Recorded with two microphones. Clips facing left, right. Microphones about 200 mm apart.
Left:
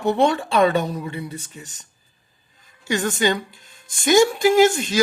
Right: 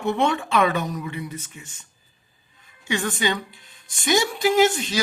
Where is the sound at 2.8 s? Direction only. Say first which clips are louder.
Left 4 dB; 45° left (ahead or behind).